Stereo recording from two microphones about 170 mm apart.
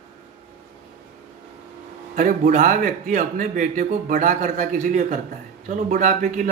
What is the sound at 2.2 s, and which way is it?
Speech, 50° right (ahead or behind).